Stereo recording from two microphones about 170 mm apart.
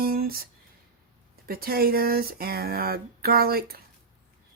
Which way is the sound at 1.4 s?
60° right (ahead or behind).